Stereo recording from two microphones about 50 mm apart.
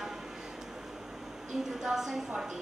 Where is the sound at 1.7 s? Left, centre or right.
Centre.